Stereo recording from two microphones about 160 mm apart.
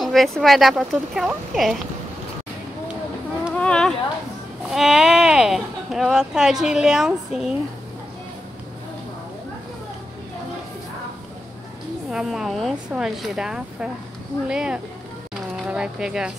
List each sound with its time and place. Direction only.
0.0 s speech: centre (ahead or behind)
3.5 s a sound: 5° left (ahead or behind)
4.6 s speech: centre (ahead or behind)
12.1 s speech: 5° right (ahead or behind)